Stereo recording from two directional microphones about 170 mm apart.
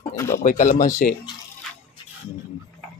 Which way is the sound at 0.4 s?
50° left (ahead or behind).